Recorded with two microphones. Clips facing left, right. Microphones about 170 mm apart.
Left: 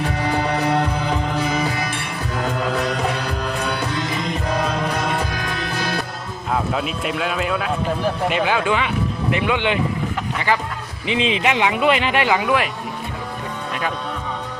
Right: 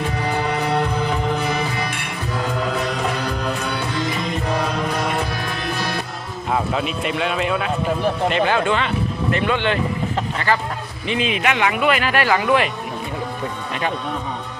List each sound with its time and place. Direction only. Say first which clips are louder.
6.5 s speech: right 1 dB; centre (ahead or behind)
11.1 s speech: left 1 dB; 25° left (ahead or behind)
12.5 s speech: right 2 dB; 5° left (ahead or behind)